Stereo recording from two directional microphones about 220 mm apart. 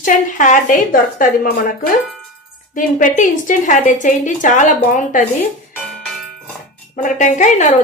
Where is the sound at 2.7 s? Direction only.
35° left (ahead or behind).